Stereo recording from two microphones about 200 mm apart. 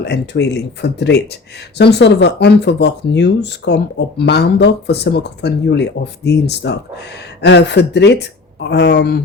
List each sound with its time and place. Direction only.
0.0 s speech: 55° left (ahead or behind)